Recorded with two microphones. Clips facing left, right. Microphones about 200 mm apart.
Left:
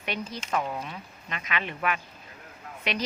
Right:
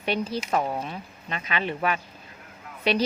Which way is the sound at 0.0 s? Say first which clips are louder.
Right 7 dB; 35° right (ahead or behind).